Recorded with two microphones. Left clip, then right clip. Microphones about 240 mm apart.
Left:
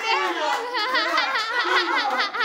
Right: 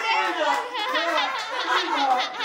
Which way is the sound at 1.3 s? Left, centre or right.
Centre.